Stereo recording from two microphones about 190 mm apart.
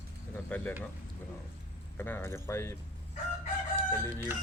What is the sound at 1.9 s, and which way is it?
Speech, 10° left (ahead or behind).